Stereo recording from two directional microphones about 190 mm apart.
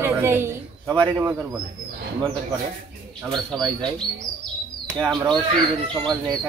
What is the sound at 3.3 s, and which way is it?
Speech, 25° right (ahead or behind).